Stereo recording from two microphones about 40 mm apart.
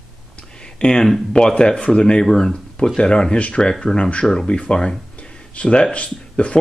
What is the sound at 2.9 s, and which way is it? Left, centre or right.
Speech, left.